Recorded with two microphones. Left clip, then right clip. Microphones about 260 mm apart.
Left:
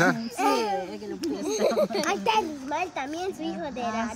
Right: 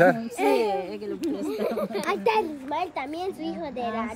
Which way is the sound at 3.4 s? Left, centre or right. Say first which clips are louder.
Even; centre.